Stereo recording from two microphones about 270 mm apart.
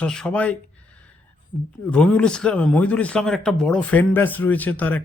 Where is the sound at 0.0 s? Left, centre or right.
Centre.